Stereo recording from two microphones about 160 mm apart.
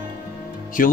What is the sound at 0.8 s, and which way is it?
Speech, 60° left (ahead or behind).